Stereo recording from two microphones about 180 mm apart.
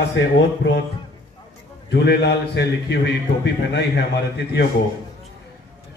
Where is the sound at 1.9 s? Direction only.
70° left (ahead or behind).